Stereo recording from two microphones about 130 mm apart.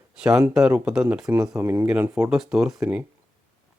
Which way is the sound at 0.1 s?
5° right (ahead or behind).